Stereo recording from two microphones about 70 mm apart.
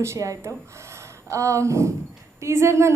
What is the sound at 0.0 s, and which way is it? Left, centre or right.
A woman's voice, right.